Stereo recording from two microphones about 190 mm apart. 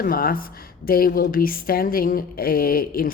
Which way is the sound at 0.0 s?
50° left (ahead or behind).